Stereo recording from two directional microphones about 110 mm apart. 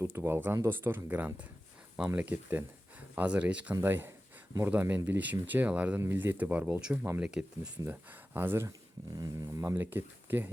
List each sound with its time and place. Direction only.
0.0 s speech: 25° right (ahead or behind); by 7.7 s 5° right (ahead or behind)
7.9 s speech: 20° right (ahead or behind)
9.1 s speech: 35° right (ahead or behind); by 10.5 s 20° right (ahead or behind)